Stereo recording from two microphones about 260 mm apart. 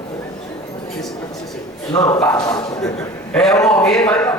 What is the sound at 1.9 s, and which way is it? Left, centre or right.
Speech, centre.